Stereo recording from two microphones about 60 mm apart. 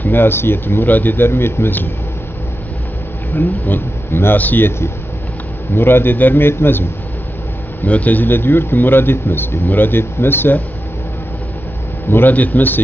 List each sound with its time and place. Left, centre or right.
0.0 s speech: left
3.3 s speech: left
7.8 s speech: left
12.1 s speech: left